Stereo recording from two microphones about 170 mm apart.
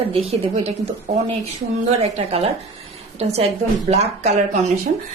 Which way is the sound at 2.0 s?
35° right (ahead or behind).